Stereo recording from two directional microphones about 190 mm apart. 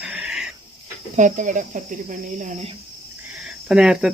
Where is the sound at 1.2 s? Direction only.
40° right (ahead or behind).